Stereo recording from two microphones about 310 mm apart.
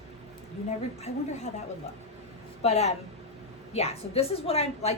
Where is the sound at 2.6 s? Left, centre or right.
Left.